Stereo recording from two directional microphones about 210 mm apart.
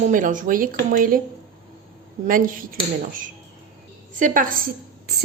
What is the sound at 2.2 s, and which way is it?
Speech, 40° right (ahead or behind).